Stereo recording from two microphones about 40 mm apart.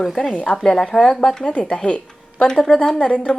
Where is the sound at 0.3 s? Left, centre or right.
Left.